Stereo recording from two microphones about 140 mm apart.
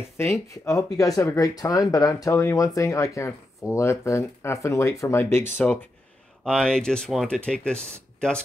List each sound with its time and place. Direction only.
0.2 s speech: 20° left (ahead or behind)